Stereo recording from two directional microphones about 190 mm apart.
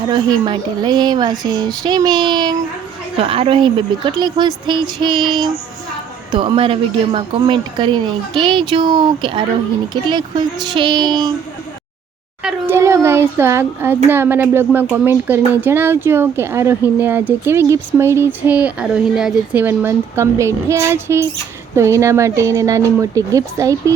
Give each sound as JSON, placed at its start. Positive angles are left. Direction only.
{"t": 0.1, "sound": "a woman's voice", "side_deg": -25}
{"t": 12.4, "sound": "speech", "side_deg": -10}